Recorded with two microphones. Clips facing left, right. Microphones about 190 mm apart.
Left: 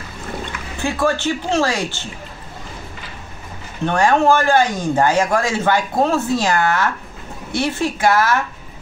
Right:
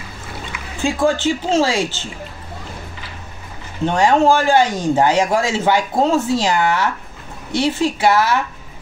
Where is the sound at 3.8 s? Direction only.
15° right (ahead or behind).